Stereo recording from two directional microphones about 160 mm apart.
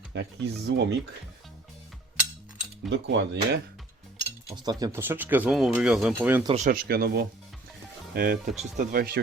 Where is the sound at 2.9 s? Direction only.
90° right.